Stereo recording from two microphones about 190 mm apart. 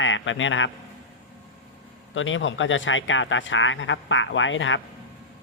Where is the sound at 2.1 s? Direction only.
90° left.